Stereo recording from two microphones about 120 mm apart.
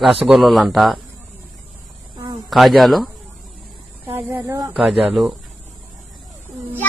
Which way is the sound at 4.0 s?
15° right (ahead or behind).